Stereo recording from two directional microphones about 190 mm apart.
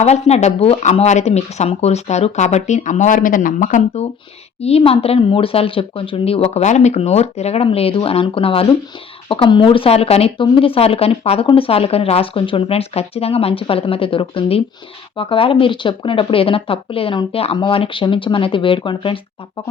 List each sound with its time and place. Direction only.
0.0 s speech: 35° left (ahead or behind)